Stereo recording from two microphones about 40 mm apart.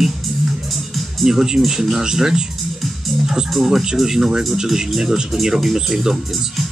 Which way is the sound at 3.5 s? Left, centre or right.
Centre.